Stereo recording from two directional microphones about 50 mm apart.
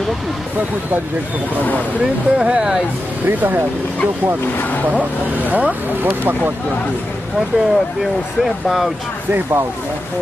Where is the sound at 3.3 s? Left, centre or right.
Right.